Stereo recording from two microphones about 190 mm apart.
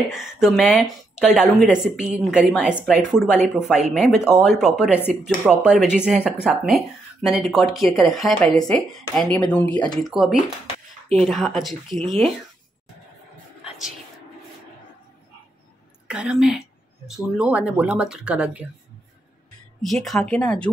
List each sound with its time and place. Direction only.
0.1 s speech: centre (ahead or behind)
16.1 s speech: 5° right (ahead or behind)
19.8 s speech: centre (ahead or behind)